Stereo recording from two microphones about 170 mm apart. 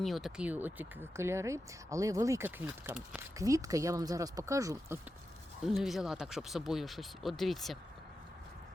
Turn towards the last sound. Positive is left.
turn(degrees=0)  # may be behind; listen again after turning